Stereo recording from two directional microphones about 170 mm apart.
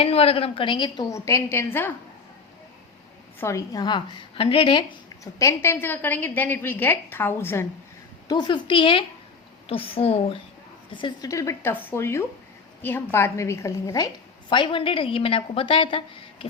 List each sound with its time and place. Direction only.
0.0 s a woman's voice: 35° left (ahead or behind); by 1.9 s 15° left (ahead or behind)
3.4 s a woman's voice: 20° left (ahead or behind)
8.3 s a woman's voice: 25° left (ahead or behind)
10.9 s a woman's voice: 25° left (ahead or behind)
14.5 s a woman's voice: 30° left (ahead or behind)